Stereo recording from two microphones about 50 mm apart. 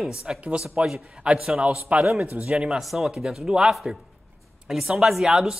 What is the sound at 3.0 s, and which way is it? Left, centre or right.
Speech, centre.